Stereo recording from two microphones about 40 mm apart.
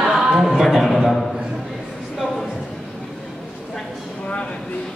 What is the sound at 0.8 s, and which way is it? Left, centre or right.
Speech, centre.